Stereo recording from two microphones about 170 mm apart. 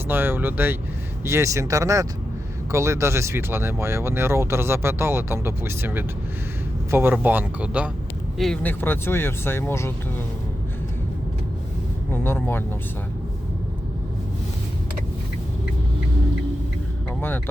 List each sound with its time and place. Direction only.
0.1 s speech: 10° right (ahead or behind)
8.4 s speech: 5° left (ahead or behind)
12.1 s speech: 15° left (ahead or behind)
17.2 s speech: 10° left (ahead or behind)